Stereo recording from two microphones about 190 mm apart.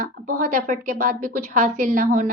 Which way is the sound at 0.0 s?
45° right (ahead or behind).